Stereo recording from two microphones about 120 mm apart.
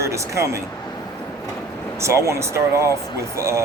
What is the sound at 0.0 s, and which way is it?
Speech, 25° right (ahead or behind).